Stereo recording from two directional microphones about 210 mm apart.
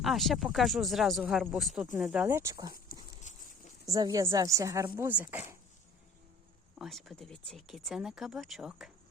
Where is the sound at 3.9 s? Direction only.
15° right (ahead or behind).